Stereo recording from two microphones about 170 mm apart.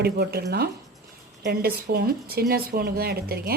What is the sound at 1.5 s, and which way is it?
A woman's voice, 65° right (ahead or behind).